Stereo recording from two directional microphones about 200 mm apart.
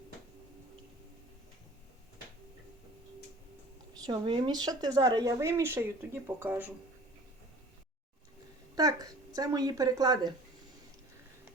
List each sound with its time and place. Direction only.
4.0 s speech: 25° right (ahead or behind)
8.7 s a woman's voice: 20° right (ahead or behind)